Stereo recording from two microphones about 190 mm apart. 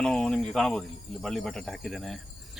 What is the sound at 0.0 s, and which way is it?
Speech, 5° left (ahead or behind).